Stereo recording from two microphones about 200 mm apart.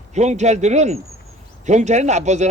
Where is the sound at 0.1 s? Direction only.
35° right (ahead or behind).